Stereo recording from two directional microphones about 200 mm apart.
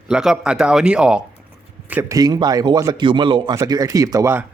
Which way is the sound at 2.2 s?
20° right (ahead or behind).